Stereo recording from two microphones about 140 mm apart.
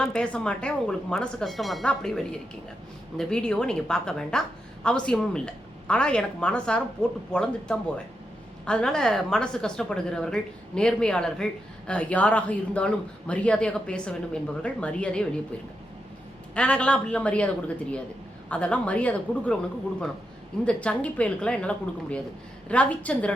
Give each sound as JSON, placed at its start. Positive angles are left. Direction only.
{"t": 0.0, "sound": "a woman's voice", "side_deg": 5}
{"t": 16.6, "sound": "speech", "side_deg": 10}
{"t": 20.7, "sound": "speech", "side_deg": 10}